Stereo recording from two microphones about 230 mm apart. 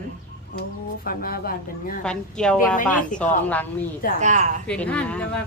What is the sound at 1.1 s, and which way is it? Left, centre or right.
Speech, left.